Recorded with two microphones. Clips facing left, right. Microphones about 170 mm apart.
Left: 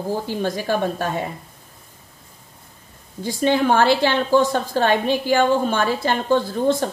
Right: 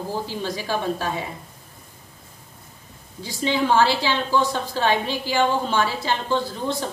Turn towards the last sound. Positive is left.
turn(degrees=55)  # may be behind; listen again after turning